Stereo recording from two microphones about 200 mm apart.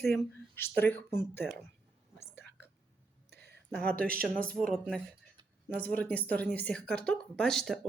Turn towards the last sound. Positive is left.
turn(degrees=0)  # may be behind; listen again after turning